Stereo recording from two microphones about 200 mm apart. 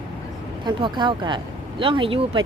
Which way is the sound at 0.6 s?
25° right (ahead or behind).